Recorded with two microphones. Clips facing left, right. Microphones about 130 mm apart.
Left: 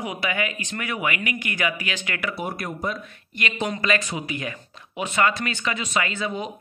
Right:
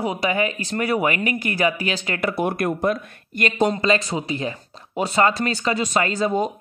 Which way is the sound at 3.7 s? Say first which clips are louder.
Right 4 dB; 30° right (ahead or behind).